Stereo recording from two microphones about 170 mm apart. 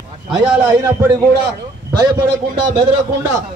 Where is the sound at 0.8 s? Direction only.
20° right (ahead or behind).